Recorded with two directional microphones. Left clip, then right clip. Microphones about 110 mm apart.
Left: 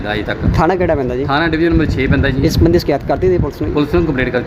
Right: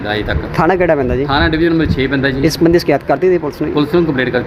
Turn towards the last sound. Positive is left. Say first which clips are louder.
# right 2 dB
turn(degrees=15)  # may be behind; listen again after turning